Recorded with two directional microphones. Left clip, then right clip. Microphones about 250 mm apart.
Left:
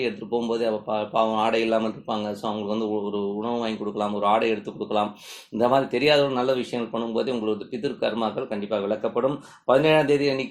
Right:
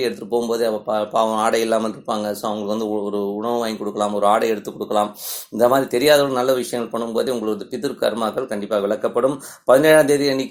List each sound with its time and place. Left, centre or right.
0.0 s speech: right